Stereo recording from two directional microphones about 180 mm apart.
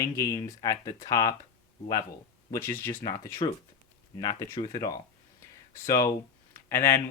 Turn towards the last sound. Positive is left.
turn(degrees=15)  # may be behind; listen again after turning